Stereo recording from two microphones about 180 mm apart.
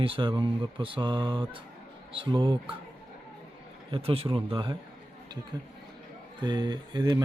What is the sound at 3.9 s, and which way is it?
Speech, 30° right (ahead or behind).